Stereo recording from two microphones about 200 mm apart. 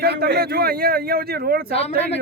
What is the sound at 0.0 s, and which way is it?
Speech, 55° right (ahead or behind).